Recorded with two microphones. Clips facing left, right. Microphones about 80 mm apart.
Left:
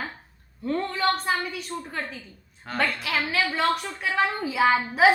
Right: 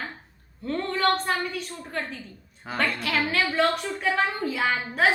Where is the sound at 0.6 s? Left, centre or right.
Centre.